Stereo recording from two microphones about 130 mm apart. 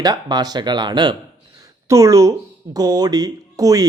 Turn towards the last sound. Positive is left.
turn(degrees=-30)  # may be behind; listen again after turning